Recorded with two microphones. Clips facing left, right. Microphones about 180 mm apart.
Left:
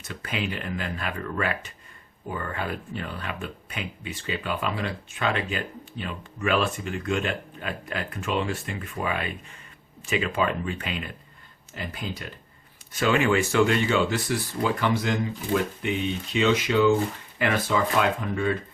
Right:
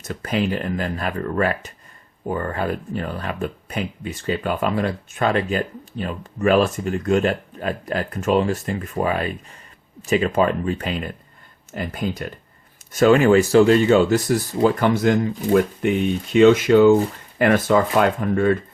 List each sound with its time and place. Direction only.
0.0 s speech: 40° right (ahead or behind)